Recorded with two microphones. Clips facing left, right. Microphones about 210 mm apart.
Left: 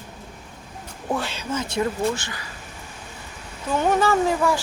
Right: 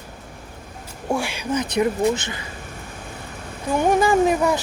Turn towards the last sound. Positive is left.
turn(degrees=-20)  # may be behind; listen again after turning